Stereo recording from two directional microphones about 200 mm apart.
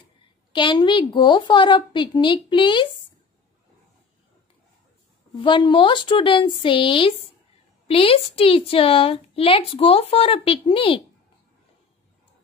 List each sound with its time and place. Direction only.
0.5 s a woman's voice: 25° left (ahead or behind)
5.3 s a woman's voice: 25° left (ahead or behind)